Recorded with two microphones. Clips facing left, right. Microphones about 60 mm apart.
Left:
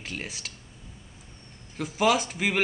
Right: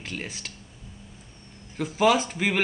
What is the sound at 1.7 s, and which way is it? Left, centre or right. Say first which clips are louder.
Speech: right 2 dB; centre.